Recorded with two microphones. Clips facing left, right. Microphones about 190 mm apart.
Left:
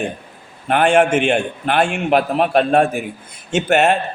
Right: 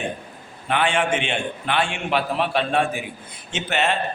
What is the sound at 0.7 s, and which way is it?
A man's voice, 50° left (ahead or behind).